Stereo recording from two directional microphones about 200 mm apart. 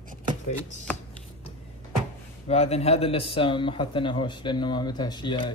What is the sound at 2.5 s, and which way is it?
Speech, 30° left (ahead or behind).